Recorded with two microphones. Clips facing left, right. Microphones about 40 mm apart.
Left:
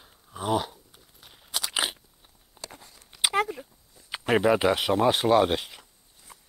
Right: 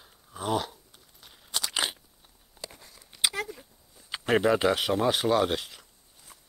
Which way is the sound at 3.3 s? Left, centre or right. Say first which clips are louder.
Left 8 dB; left.